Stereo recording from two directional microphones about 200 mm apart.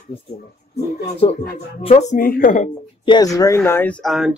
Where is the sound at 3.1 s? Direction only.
20° left (ahead or behind); by 4.3 s centre (ahead or behind).